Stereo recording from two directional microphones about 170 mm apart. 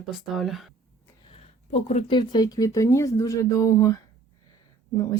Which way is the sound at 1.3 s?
40° left (ahead or behind).